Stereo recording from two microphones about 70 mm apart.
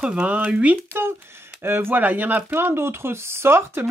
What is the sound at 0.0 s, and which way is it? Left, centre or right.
Speech, centre.